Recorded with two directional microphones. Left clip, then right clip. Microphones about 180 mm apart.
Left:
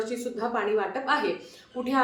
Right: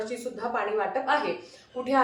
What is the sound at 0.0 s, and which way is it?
Speech, 20° left (ahead or behind).